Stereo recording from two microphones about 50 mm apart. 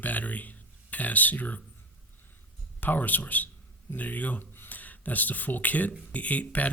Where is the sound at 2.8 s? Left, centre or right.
Left.